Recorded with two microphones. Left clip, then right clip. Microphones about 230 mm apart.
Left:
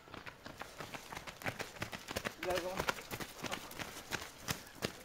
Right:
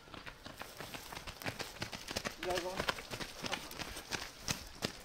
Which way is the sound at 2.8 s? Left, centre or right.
Left.